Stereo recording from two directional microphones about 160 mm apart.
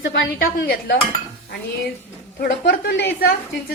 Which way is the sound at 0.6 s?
80° left.